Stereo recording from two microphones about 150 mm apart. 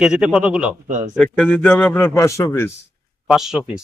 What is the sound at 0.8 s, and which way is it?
Speech, 55° right (ahead or behind).